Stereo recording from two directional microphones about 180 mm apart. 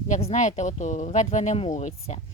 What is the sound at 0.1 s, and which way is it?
Speech, 40° left (ahead or behind).